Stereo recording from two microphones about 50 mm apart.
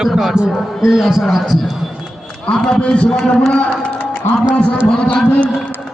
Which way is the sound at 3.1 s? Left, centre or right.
Centre.